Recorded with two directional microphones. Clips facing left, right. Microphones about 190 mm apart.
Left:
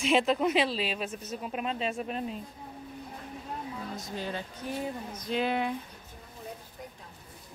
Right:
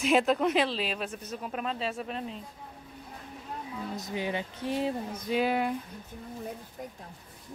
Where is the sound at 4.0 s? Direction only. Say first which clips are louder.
Right 6 dB; 15° right (ahead or behind).